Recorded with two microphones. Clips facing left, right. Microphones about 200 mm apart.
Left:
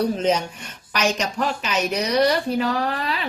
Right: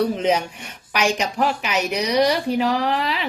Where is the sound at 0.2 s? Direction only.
10° right (ahead or behind).